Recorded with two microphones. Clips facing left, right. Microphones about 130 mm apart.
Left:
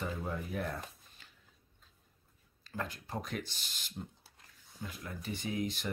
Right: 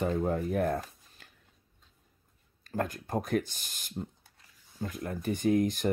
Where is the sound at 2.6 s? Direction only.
50° right (ahead or behind).